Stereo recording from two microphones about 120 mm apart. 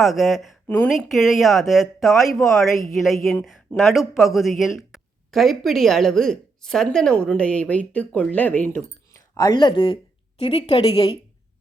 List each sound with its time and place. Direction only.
0.0 s speech: centre (ahead or behind); by 8.8 s 15° left (ahead or behind)
9.1 s speech: 30° left (ahead or behind); by 11.2 s 55° left (ahead or behind)